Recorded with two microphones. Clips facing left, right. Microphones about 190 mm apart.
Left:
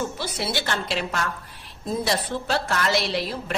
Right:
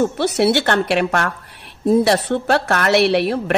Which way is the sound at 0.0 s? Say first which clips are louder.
Right 12 dB; 65° right (ahead or behind).